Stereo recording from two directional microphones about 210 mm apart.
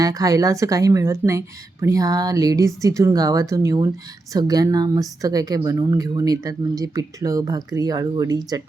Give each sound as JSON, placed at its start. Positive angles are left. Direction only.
{"t": 0.0, "sound": "a woman's voice", "side_deg": -15}